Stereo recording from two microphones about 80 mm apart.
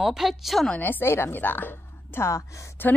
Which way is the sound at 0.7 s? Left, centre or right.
Left.